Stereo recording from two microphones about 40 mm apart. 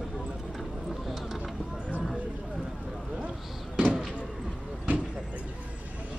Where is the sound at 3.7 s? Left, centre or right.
Right.